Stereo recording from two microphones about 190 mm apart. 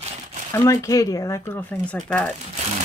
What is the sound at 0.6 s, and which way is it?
Speech, 15° left (ahead or behind).